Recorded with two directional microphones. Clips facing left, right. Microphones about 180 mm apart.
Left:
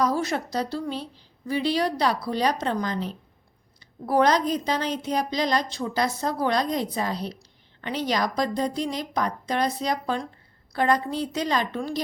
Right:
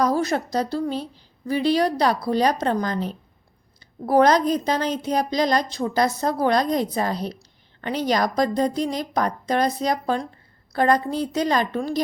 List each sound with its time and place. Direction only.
0.0 s a woman's voice: 40° right (ahead or behind)